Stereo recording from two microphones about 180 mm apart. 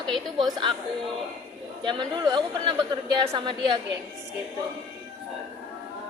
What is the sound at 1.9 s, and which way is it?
A woman's voice, 25° right (ahead or behind).